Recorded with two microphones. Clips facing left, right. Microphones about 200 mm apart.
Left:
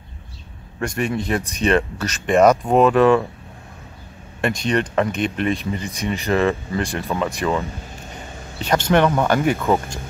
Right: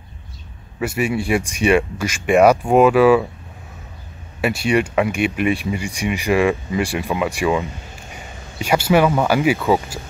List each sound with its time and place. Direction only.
0.7 s speech: 5° right (ahead or behind)
4.4 s speech: 5° right (ahead or behind)